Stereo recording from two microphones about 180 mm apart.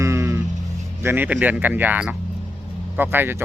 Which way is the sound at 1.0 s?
10° right (ahead or behind).